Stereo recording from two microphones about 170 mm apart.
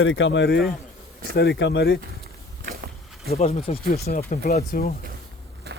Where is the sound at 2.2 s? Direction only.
70° right (ahead or behind).